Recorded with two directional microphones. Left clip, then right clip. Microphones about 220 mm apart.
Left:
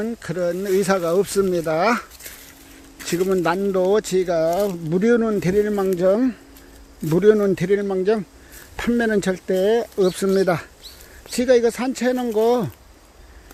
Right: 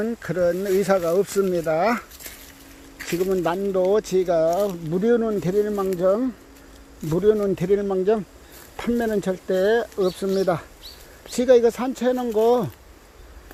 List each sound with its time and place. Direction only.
0.0 s speech: 10° left (ahead or behind)
3.1 s speech: 25° left (ahead or behind)
7.5 s speech: 15° left (ahead or behind)
10.0 s speech: 35° left (ahead or behind)
11.3 s speech: 15° left (ahead or behind)